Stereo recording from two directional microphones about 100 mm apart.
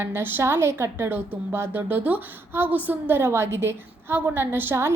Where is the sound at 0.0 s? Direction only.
20° right (ahead or behind).